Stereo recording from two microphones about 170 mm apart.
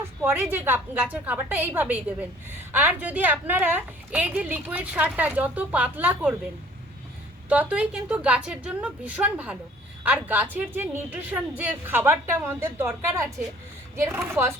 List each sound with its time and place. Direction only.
0.2 s a woman's voice: 15° right (ahead or behind)
7.5 s a woman's voice: 10° right (ahead or behind)